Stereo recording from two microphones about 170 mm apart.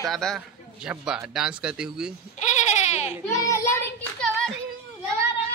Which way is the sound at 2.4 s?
45° left (ahead or behind).